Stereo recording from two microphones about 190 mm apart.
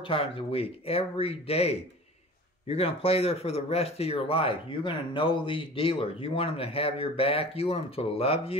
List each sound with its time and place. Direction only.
0.0 s speech: 30° left (ahead or behind)